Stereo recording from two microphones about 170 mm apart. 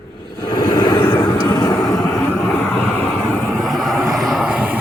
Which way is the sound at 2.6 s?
10° left (ahead or behind).